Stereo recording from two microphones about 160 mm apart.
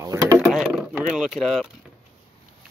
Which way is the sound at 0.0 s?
20° right (ahead or behind).